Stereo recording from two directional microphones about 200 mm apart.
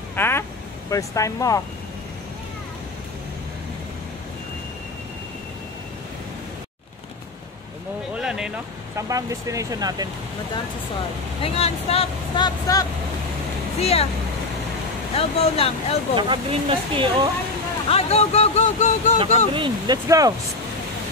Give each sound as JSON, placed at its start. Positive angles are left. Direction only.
{"t": 0.1, "sound": "speech", "side_deg": 10}
{"t": 8.1, "sound": "vehicle", "side_deg": -5}
{"t": 8.9, "sound": "speech", "side_deg": -15}
{"t": 11.4, "sound": "speech", "side_deg": 30}
{"t": 13.7, "sound": "speech", "side_deg": 30}
{"t": 15.1, "sound": "speech", "side_deg": 30}
{"t": 16.2, "sound": "speech", "side_deg": -25}
{"t": 17.8, "sound": "speech", "side_deg": 30}
{"t": 19.1, "sound": "speech", "side_deg": -25}